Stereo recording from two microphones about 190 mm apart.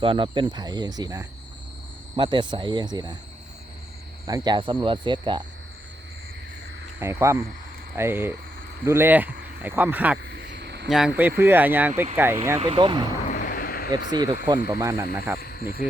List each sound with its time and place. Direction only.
0.0 s speech: 25° right (ahead or behind)
4.3 s speech: 20° right (ahead or behind)
7.0 s speech: 15° right (ahead or behind)
10.2 s cricket: 60° right (ahead or behind)
10.8 s speech: 5° right (ahead or behind)
12.5 s speech: 30° right (ahead or behind)
13.3 s a sound: 50° left (ahead or behind)
14.1 s speech: 20° right (ahead or behind)
15.4 s speech: 55° left (ahead or behind)